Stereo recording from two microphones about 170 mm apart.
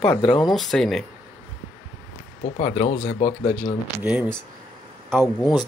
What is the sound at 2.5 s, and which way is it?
Speech, 45° left (ahead or behind).